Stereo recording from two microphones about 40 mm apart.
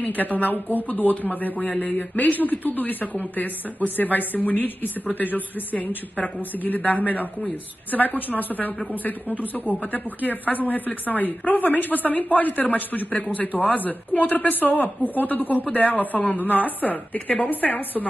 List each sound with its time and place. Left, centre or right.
0.0 s speech: left